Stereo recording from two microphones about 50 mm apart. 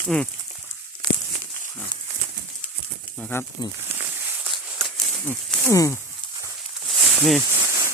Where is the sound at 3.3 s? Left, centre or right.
Left.